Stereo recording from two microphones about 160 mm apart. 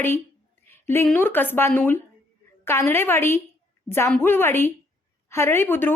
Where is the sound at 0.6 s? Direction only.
15° left (ahead or behind).